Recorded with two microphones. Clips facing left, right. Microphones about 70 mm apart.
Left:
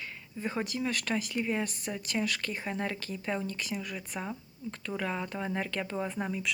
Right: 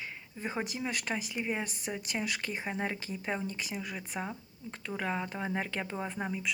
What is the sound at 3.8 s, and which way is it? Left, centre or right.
Speech, right.